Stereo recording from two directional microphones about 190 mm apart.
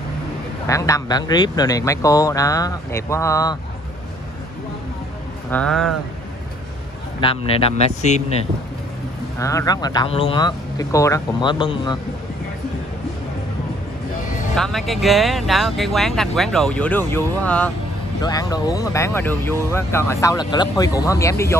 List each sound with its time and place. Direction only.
0.7 s speech: 15° left (ahead or behind)
5.5 s speech: 5° left (ahead or behind)
7.2 s speech: 30° left (ahead or behind)
9.4 s speech: 15° left (ahead or behind)
14.5 s speech: centre (ahead or behind)
18.2 s speech: 20° left (ahead or behind)